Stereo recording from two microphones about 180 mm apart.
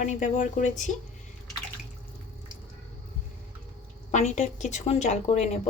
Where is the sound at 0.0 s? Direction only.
45° left (ahead or behind).